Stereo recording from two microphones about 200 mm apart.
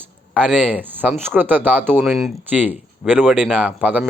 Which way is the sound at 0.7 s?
10° right (ahead or behind).